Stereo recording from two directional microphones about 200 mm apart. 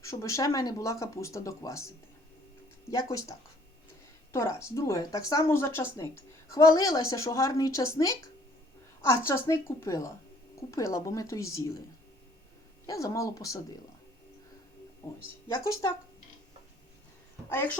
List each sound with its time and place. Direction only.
0.0 s speech: 15° left (ahead or behind)
2.9 s speech: 15° left (ahead or behind)
12.8 s speech: 15° left (ahead or behind)
15.0 s speech: 10° left (ahead or behind)